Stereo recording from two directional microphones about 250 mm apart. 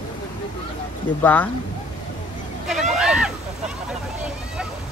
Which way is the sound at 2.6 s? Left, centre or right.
Centre.